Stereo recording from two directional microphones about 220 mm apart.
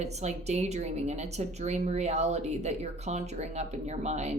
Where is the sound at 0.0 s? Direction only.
30° right (ahead or behind).